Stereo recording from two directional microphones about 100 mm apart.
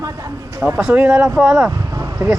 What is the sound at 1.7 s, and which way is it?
Vehicle, 35° right (ahead or behind).